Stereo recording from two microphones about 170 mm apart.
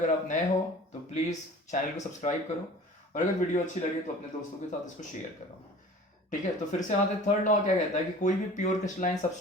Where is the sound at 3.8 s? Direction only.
40° left (ahead or behind).